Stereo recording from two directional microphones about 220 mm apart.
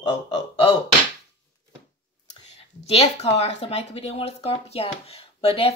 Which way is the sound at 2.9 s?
30° left (ahead or behind).